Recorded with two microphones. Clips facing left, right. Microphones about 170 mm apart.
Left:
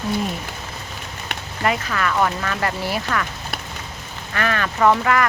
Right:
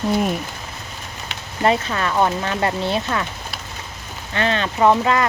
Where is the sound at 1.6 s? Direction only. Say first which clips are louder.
Right 3 dB; 25° right (ahead or behind).